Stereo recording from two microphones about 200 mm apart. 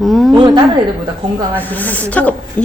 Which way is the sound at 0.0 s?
Centre (ahead or behind).